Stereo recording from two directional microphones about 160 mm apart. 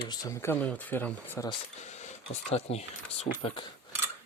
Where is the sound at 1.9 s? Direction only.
45° left (ahead or behind).